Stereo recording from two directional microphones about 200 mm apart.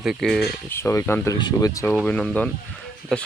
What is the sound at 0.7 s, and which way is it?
Speech, 10° left (ahead or behind).